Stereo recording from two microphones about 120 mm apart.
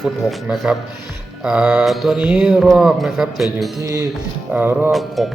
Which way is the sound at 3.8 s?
30° right (ahead or behind).